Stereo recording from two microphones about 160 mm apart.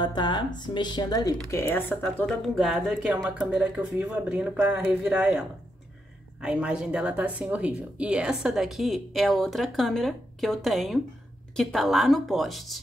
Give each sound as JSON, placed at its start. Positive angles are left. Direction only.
{"t": 0.0, "sound": "speech", "side_deg": 25}
{"t": 2.4, "sound": "a woman's voice", "side_deg": 0}
{"t": 6.4, "sound": "a woman's voice", "side_deg": -5}